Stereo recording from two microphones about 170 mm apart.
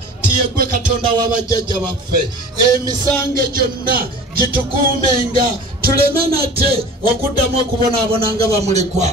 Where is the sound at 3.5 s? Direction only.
60° right (ahead or behind).